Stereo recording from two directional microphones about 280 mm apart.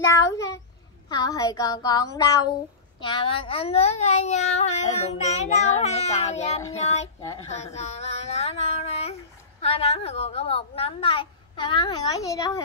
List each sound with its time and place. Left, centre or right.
0.0 s a child's voice: centre